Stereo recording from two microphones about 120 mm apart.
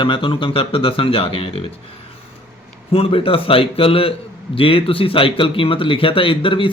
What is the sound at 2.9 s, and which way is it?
Speech, 50° left (ahead or behind).